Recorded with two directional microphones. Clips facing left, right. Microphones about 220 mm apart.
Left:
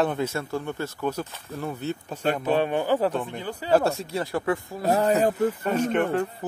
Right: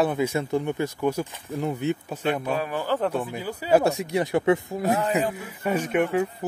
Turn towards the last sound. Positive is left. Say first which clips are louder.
# even
turn(degrees=-10)  # may be behind; listen again after turning